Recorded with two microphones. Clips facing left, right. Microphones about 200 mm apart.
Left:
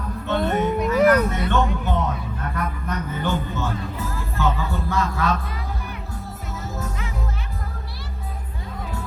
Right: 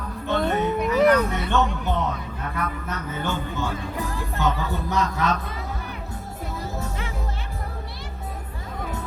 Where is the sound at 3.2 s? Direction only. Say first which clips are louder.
Left 2 dB; 10° right (ahead or behind).